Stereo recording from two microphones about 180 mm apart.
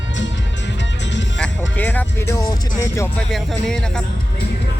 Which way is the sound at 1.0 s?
85° left.